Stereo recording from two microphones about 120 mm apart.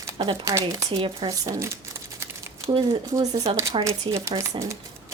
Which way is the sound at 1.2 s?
30° right (ahead or behind).